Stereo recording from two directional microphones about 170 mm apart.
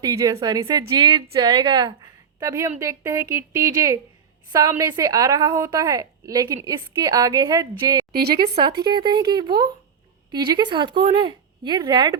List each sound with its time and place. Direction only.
0.0 s a woman's voice: 20° right (ahead or behind)
8.1 s a woman's voice: 70° right (ahead or behind)
8.8 s a woman's voice: 25° right (ahead or behind)